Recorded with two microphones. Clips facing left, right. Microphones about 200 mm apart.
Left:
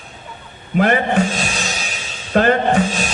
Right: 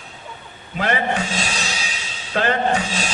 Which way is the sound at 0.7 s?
50° left (ahead or behind).